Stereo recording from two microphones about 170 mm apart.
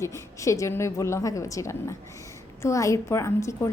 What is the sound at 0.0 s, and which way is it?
A woman's voice, 20° left (ahead or behind).